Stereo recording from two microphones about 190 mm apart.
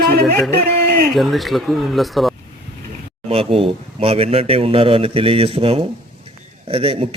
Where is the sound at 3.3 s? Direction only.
30° right (ahead or behind).